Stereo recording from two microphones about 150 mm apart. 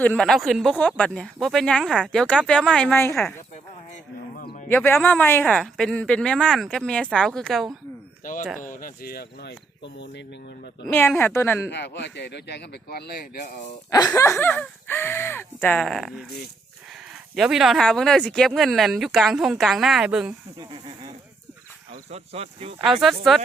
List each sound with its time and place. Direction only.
0.0 s speech: 5° left (ahead or behind)
4.7 s speech: 15° left (ahead or behind)
8.2 s speech: 65° left (ahead or behind); by 9.5 s 90° left
11.2 s speech: 15° left (ahead or behind)
12.2 s speech: 90° left
14.2 s speech: 20° left (ahead or behind); by 16.2 s centre (ahead or behind)
17.3 s speech: centre (ahead or behind)
20.6 s a sound: 30° right (ahead or behind)
22.1 s speech: 40° right (ahead or behind)
22.8 s speech: centre (ahead or behind)